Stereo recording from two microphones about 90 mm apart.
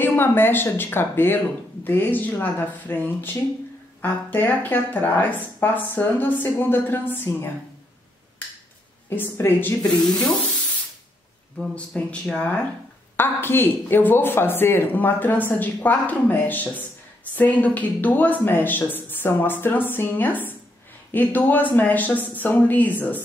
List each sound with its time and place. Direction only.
0.0 s speech: 25° left (ahead or behind)
9.1 s speech: 20° left (ahead or behind)
10.0 s speech: 5° left (ahead or behind)
11.7 s speech: 15° left (ahead or behind)
13.1 s speech: 25° left (ahead or behind)